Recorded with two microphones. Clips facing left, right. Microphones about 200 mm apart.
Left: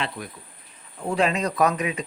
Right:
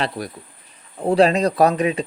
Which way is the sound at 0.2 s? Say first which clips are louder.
Right 7 dB; 35° right (ahead or behind).